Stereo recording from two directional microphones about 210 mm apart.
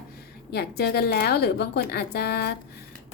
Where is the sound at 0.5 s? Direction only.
50° left (ahead or behind).